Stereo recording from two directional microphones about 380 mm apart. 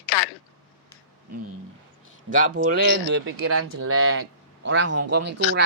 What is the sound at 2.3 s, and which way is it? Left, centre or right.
Speech, right.